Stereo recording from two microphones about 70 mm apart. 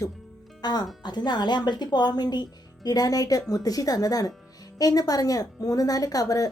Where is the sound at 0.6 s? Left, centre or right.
Left.